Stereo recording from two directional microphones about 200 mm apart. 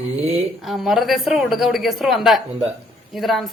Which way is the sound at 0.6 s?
Centre (ahead or behind).